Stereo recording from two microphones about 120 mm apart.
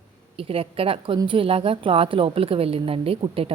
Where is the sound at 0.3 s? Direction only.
50° right (ahead or behind).